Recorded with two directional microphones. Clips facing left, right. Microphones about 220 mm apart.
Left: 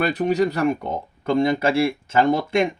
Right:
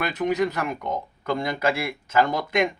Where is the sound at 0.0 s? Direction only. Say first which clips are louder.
Left 4 dB; 35° left (ahead or behind).